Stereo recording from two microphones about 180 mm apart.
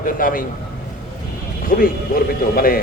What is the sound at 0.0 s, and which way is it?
Speech, 50° left (ahead or behind).